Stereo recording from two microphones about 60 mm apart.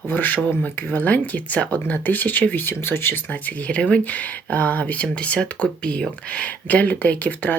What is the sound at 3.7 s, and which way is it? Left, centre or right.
Speech, left.